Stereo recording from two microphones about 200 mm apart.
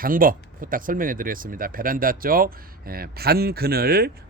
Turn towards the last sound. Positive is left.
turn(degrees=-50)  # may be behind; listen again after turning